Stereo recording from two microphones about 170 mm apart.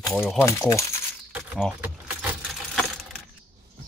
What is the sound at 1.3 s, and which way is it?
Keys jangling, centre (ahead or behind).